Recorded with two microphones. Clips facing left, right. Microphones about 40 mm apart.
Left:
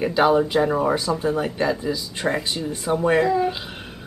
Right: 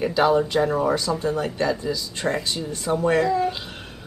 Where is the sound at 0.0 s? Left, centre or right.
Centre.